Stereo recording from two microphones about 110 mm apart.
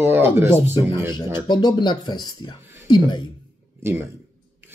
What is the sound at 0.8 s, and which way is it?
Speech, 45° left (ahead or behind).